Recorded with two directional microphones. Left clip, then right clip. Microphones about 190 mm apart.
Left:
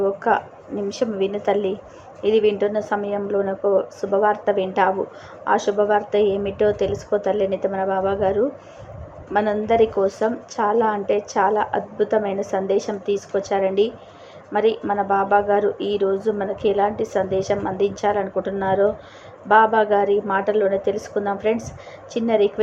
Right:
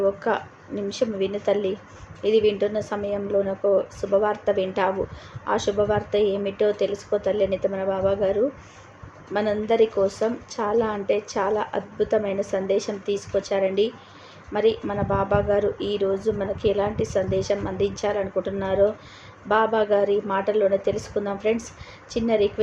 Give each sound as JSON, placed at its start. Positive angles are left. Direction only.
{"t": 0.0, "sound": "a woman's voice", "side_deg": 15}